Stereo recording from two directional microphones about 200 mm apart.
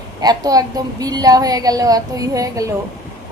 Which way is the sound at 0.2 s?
20° right (ahead or behind).